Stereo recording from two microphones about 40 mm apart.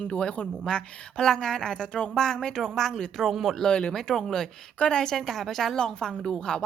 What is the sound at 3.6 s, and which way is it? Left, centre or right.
Speech, left.